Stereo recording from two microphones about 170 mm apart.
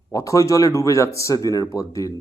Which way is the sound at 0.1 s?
20° left (ahead or behind).